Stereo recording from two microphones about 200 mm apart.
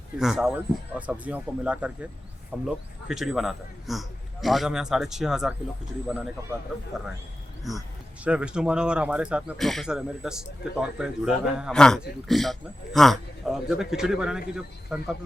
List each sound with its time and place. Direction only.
0.2 s speech: centre (ahead or behind)